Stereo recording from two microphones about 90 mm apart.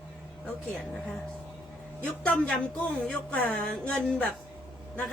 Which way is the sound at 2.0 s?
15° left (ahead or behind).